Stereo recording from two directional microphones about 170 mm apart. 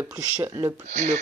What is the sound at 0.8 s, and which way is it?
Speech, 45° right (ahead or behind).